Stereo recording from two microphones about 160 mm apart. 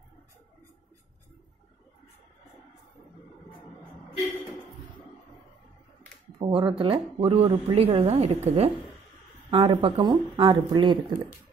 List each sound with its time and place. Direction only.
6.4 s speech: 30° right (ahead or behind)